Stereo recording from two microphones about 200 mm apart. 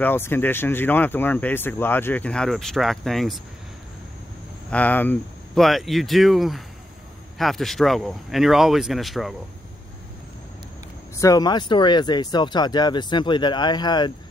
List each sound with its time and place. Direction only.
0.0 s speech: 10° left (ahead or behind)
4.6 s speech: 5° left (ahead or behind)
11.1 s speech: 20° left (ahead or behind)